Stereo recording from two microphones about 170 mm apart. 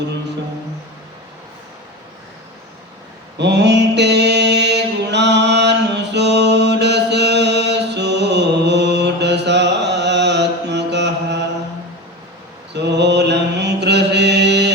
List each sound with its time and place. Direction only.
3.3 s mantra: 90° right
12.7 s mantra: 90° right